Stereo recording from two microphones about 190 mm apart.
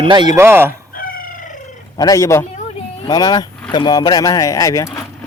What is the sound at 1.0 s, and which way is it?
Chicken, 45° left (ahead or behind).